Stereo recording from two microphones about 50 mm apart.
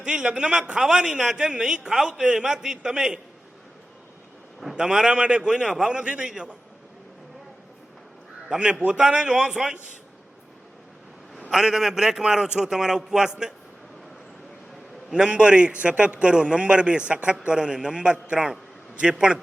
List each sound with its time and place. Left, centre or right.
0.0 s a man's voice: centre
4.6 s a man's voice: centre
8.4 s a man's voice: centre
11.5 s a man's voice: centre
15.1 s a man's voice: centre
18.3 s a man's voice: centre